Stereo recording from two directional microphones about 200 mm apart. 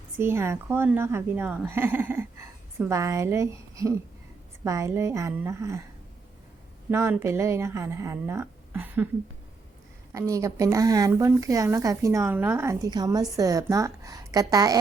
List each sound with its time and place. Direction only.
0.2 s speech: 10° right (ahead or behind)
6.9 s speech: 10° right (ahead or behind)
10.1 s speech: 15° right (ahead or behind)